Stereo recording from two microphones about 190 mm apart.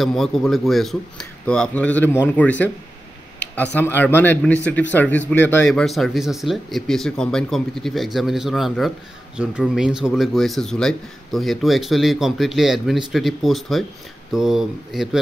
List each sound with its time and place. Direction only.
0.0 s speech: centre (ahead or behind)
3.4 s a sound: 60° left (ahead or behind)
3.8 s speech: 10° left (ahead or behind)